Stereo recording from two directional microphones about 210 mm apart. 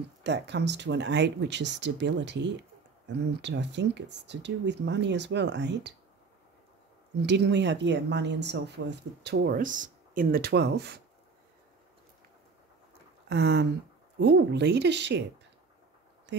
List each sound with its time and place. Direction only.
0.2 s speech: 55° right (ahead or behind)
7.2 s speech: 55° right (ahead or behind)
13.3 s speech: 55° right (ahead or behind)
16.3 s a sound: 55° right (ahead or behind)